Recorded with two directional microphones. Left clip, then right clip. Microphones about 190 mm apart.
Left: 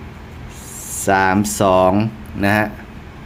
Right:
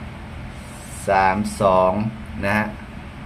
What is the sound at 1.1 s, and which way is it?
Speech, 60° left (ahead or behind).